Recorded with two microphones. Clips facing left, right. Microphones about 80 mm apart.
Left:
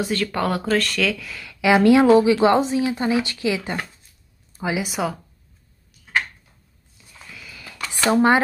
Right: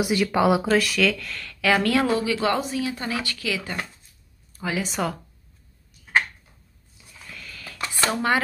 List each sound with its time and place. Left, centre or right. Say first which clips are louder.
0.0 s speech: right 2 dB; centre
7.0 s a sound: even; centre
8.1 s speech: left 8 dB; left